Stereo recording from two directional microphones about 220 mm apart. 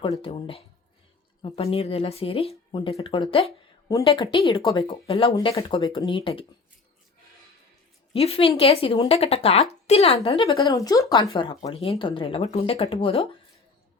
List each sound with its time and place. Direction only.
0.0 s speech: 25° left (ahead or behind)
8.1 s speech: 25° left (ahead or behind)